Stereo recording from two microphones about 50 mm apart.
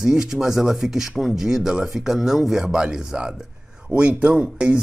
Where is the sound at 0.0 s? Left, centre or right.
Centre.